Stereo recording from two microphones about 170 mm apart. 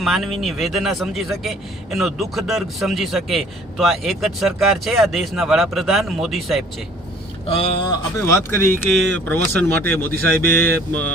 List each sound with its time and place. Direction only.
0.0 s speech: centre (ahead or behind)
7.4 s speech: 35° left (ahead or behind)
8.2 s speech: 15° left (ahead or behind)